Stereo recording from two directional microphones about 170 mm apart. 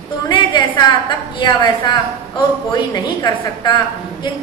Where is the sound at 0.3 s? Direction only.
25° left (ahead or behind).